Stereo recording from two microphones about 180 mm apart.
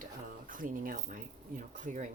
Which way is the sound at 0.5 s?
50° right (ahead or behind).